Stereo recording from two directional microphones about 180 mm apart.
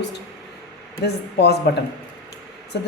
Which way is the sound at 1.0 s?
65° left (ahead or behind).